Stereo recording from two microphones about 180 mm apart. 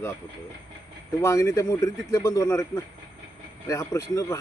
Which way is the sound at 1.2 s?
15° left (ahead or behind).